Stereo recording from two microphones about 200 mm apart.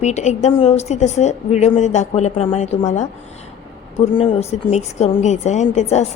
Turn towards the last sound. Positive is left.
turn(degrees=35)  # may be behind; listen again after turning